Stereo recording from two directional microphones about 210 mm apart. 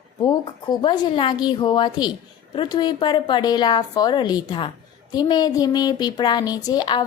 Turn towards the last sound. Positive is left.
turn(degrees=20)  # may be behind; listen again after turning